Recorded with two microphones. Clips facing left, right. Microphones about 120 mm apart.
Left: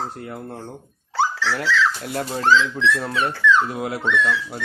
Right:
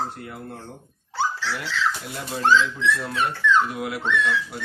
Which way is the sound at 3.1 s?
90° left.